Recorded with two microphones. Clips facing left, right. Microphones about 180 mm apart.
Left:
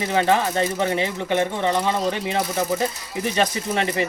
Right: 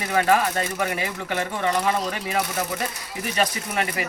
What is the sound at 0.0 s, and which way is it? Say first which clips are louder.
Speech: left 1 dB; 25° left (ahead or behind).